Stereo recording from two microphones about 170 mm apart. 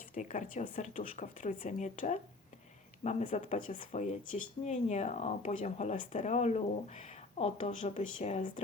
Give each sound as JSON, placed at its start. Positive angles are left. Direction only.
{"t": 0.1, "sound": "speech", "side_deg": 50}